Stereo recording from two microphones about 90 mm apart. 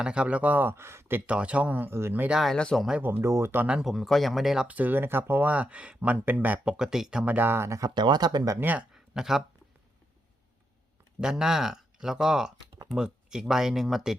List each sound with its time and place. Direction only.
0.0 s speech: 10° right (ahead or behind); by 1.2 s 25° right (ahead or behind)
1.3 s speech: 15° right (ahead or behind)
2.4 s speech: 5° left (ahead or behind)
3.0 s speech: 25° right (ahead or behind)
3.7 s speech: 5° right (ahead or behind)
6.7 s speech: 5° right (ahead or behind)
7.3 s speech: 25° right (ahead or behind)
7.9 s speech: 55° right (ahead or behind)
8.5 s speech: 20° right (ahead or behind)
8.9 s a sound: 5° right (ahead or behind)
11.2 s speech: 5° right (ahead or behind)